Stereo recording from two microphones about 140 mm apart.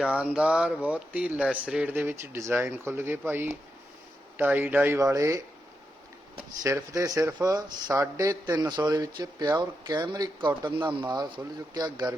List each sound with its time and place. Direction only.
0.0 s speech: 5° right (ahead or behind)
6.6 s speech: 20° right (ahead or behind)